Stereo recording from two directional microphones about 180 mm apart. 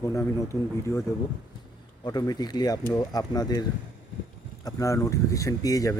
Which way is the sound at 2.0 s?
20° left (ahead or behind).